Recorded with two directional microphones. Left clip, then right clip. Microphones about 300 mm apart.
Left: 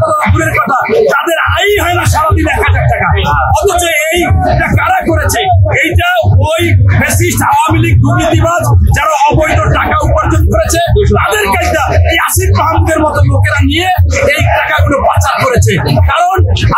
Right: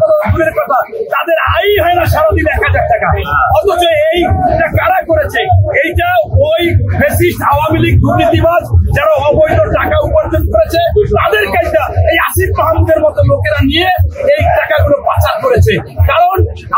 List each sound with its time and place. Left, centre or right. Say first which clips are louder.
1.1 s a sound: even; centre
4.8 s music: even; centre
11.1 s speech: even; centre
16.1 s speech: right 2 dB; centre